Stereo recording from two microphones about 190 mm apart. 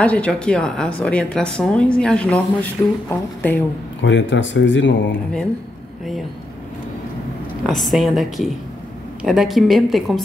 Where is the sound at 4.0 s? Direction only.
75° left (ahead or behind).